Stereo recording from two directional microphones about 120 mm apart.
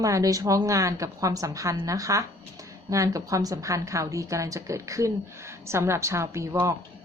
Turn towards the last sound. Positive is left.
turn(degrees=-25)  # may be behind; listen again after turning